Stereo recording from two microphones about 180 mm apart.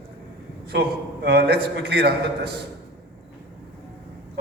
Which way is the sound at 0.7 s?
65° right (ahead or behind).